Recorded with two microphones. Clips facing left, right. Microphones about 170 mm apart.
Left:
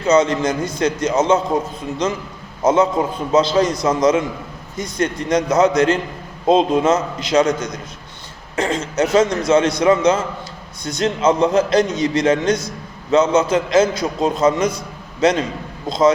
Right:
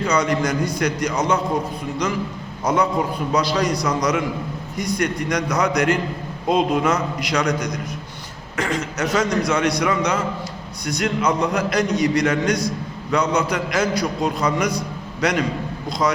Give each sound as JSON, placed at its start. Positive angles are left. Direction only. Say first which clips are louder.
{"t": 0.0, "sound": "a man's voice", "louder": "left 5 dB", "side_deg": 25}
{"t": 2.6, "sound": "a man's voice", "louder": "left 4 dB", "side_deg": 25}